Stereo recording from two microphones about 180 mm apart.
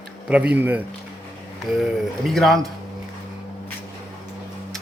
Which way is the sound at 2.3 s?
Centre (ahead or behind).